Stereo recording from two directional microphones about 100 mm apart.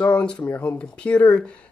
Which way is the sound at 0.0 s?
10° left (ahead or behind).